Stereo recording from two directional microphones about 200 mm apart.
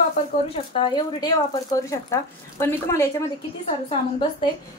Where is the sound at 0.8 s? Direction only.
20° left (ahead or behind).